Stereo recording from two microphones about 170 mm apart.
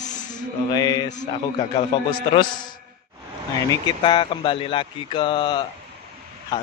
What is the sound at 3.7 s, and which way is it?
Speech, 25° left (ahead or behind).